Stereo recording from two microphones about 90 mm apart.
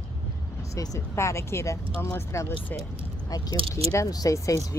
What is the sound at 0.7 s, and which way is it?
Speech, 40° left (ahead or behind).